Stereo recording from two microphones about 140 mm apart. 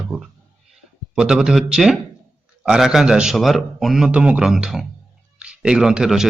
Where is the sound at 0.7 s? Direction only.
5° right (ahead or behind).